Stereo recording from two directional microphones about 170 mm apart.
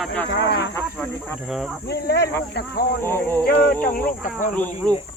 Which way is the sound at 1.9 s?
70° left (ahead or behind).